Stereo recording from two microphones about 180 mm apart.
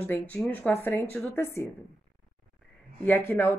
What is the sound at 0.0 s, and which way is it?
Speech, 10° left (ahead or behind).